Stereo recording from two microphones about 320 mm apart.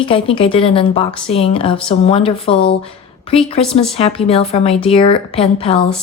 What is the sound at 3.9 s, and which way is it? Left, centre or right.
A woman's voice, centre.